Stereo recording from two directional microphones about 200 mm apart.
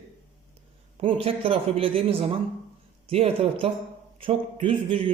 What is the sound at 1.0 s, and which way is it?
A man's voice, 25° right (ahead or behind).